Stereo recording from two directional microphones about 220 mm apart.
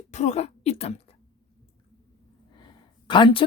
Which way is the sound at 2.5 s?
20° left (ahead or behind).